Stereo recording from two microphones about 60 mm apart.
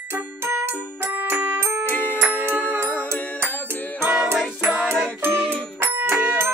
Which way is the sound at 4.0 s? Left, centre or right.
Right.